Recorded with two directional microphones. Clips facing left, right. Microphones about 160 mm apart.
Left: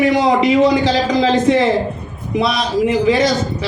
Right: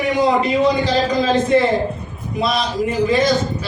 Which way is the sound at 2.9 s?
85° left.